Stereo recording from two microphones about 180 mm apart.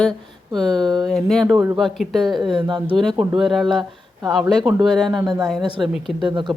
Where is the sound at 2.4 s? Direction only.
25° right (ahead or behind).